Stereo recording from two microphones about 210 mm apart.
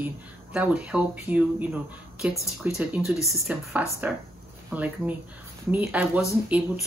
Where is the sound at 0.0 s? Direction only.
5° right (ahead or behind).